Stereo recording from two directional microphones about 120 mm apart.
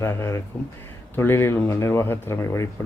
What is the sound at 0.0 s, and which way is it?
Speech, 25° left (ahead or behind).